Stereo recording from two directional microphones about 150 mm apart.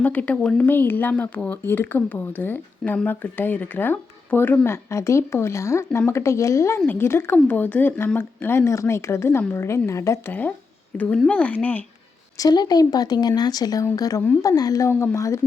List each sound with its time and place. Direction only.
0.0 s speech: 10° left (ahead or behind)
12.4 s speech: 25° left (ahead or behind)